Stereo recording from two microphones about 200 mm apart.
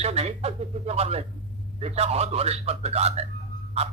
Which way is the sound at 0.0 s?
30° right (ahead or behind).